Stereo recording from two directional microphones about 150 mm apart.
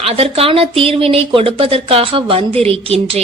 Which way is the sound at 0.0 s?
40° right (ahead or behind).